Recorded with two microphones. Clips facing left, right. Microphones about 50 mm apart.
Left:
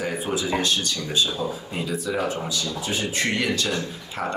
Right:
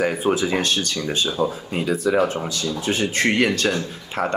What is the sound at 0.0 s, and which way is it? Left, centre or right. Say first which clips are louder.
Speech: right 6 dB; right.